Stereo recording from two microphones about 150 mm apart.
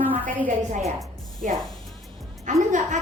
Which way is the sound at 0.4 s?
55° right (ahead or behind).